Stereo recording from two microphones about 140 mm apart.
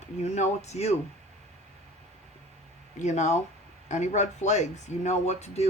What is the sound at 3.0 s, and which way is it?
Speech, 55° left (ahead or behind).